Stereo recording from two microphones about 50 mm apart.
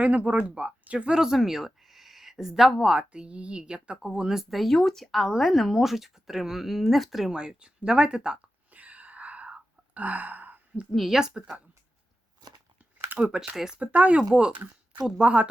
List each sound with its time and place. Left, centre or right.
0.0 s speech: right; by 3.0 s centre
3.0 s speech: right
4.5 s speech: centre
7.3 s speech: centre
8.7 s whispering: right
10.9 s speech: centre
13.1 s speech: centre
13.7 s speech: right